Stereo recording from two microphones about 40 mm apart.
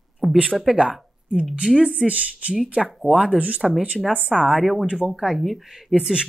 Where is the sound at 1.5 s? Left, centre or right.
Centre.